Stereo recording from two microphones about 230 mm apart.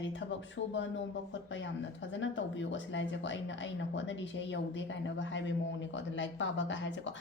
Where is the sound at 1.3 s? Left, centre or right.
Left.